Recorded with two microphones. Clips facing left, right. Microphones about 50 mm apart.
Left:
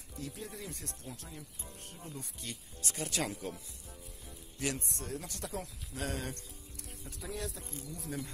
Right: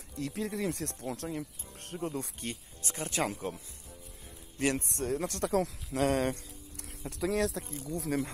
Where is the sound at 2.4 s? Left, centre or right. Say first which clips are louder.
Right 4 dB; right.